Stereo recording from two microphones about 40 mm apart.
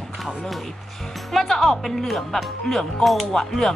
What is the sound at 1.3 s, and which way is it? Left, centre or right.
Speech, centre.